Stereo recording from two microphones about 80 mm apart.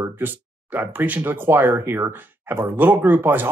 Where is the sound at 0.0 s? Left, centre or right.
Right.